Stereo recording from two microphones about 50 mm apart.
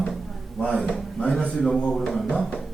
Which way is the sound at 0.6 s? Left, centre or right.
Centre.